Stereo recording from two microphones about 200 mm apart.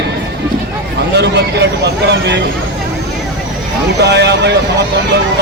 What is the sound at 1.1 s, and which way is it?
Speech, 55° right (ahead or behind).